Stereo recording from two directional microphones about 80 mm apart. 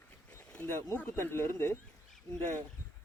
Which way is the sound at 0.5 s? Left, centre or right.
Left.